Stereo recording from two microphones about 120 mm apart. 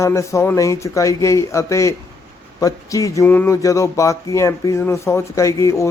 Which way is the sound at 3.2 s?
15° left (ahead or behind).